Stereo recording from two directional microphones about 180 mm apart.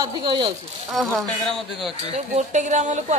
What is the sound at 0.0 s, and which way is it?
Speech, 25° right (ahead or behind).